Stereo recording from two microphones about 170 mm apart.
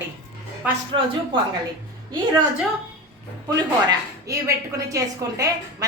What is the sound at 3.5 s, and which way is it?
A woman's voice, 20° right (ahead or behind).